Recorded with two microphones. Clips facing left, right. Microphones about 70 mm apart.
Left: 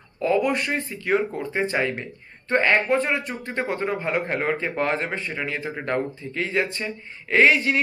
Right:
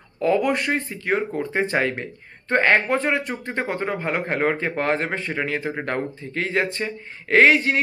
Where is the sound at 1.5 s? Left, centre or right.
Right.